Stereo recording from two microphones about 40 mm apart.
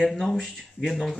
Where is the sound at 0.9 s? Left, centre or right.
Centre.